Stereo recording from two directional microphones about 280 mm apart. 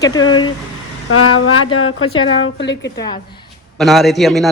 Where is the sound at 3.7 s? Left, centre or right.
Centre.